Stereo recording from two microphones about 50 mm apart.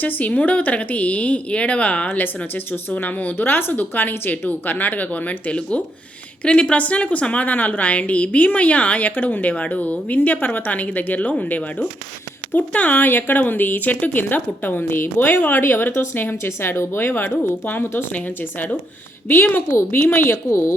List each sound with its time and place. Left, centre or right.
0.0 s a woman's voice: left
2.0 s a woman's voice: left
19.7 s speech: left
20.5 s speech: left